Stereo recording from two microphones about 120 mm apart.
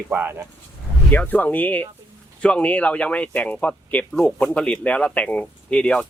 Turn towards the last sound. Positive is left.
turn(degrees=10)  # may be behind; listen again after turning